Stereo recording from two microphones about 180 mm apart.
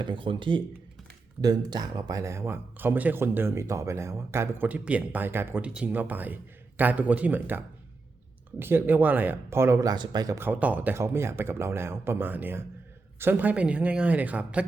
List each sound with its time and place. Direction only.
0.0 s speech: 25° right (ahead or behind); by 14.7 s 5° right (ahead or behind)